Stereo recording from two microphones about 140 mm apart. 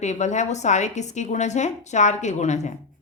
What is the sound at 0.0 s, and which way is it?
A woman's voice, 55° left (ahead or behind).